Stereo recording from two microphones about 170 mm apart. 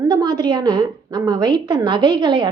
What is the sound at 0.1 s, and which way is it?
A woman's voice, 25° right (ahead or behind).